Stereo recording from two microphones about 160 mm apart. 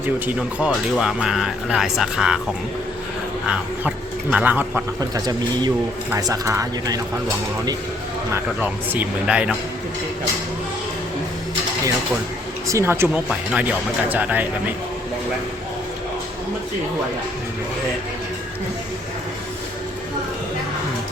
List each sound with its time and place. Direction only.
0.3 s speech: 5° right (ahead or behind)
3.5 s speech: 10° right (ahead or behind)
4.9 s speech: 25° right (ahead or behind)
8.3 s speech: 10° right (ahead or behind)
12.6 s speech: 15° right (ahead or behind)